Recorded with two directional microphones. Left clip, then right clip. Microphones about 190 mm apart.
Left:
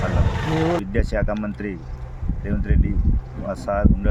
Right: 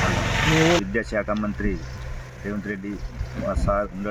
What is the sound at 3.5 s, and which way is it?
Speech, 20° left (ahead or behind).